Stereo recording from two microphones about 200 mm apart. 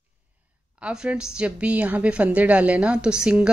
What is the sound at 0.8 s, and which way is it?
Speech, 5° right (ahead or behind).